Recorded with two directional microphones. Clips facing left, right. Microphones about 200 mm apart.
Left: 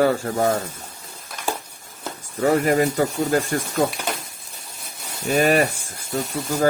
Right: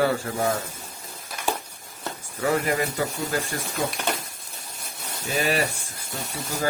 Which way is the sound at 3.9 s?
Centre (ahead or behind).